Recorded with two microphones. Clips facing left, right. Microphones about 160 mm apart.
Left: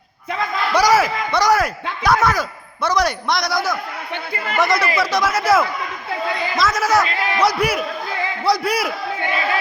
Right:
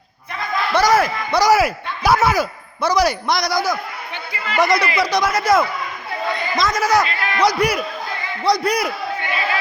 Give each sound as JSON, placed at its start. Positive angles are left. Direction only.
{"t": 0.7, "sound": "a man's voice", "side_deg": 10}